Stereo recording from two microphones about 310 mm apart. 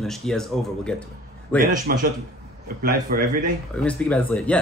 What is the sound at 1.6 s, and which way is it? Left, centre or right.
A man's voice, right.